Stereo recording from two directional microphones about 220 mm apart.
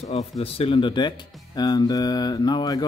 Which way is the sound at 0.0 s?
30° left (ahead or behind).